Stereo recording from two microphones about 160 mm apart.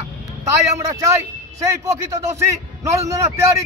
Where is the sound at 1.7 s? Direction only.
20° right (ahead or behind).